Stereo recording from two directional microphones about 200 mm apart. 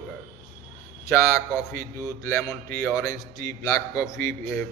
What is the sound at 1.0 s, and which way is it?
A man's voice, 15° left (ahead or behind).